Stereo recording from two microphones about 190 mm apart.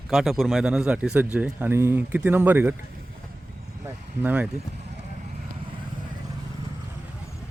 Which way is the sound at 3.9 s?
10° right (ahead or behind).